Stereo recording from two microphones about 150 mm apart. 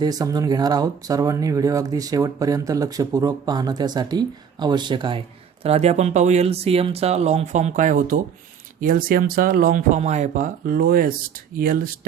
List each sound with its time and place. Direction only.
0.0 s speech: 25° right (ahead or behind)
5.6 s speech: 45° right (ahead or behind); by 11.9 s 70° right (ahead or behind)